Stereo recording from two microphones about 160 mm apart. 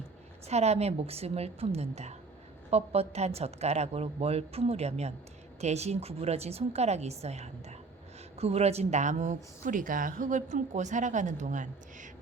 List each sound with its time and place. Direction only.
0.4 s a woman's voice: 40° right (ahead or behind)